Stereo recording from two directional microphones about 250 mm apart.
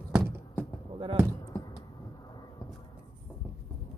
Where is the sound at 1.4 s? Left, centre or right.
Centre.